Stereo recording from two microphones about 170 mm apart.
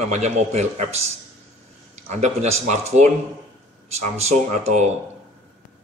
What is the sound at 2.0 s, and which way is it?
Speech, 40° right (ahead or behind).